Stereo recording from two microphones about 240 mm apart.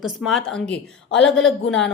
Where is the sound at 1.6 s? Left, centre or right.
Left.